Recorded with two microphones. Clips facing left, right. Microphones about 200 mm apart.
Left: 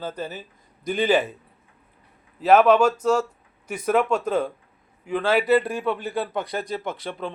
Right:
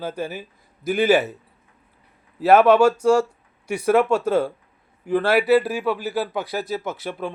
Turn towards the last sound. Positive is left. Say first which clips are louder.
# right 2 dB
turn(degrees=-5)  # may be behind; listen again after turning